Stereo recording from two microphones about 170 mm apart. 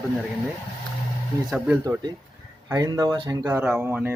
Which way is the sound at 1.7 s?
20° right (ahead or behind).